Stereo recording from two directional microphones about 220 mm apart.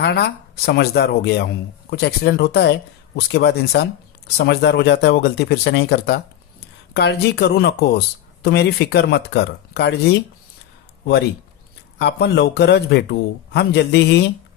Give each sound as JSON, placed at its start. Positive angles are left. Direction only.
{"t": 0.0, "sound": "speech", "side_deg": 50}
{"t": 11.9, "sound": "speech", "side_deg": 50}